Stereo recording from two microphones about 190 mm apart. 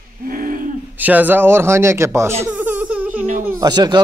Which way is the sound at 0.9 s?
10° right (ahead or behind).